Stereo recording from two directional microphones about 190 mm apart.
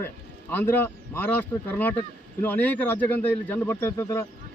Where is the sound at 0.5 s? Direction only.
10° left (ahead or behind).